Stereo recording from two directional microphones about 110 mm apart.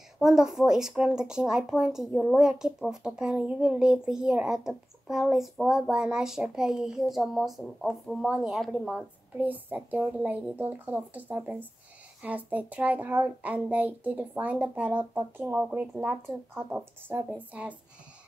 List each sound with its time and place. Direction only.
0.2 s speech: 5° right (ahead or behind)
9.4 s a child's voice: 15° right (ahead or behind)